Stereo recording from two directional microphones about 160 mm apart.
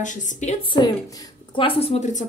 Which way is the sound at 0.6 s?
25° left (ahead or behind).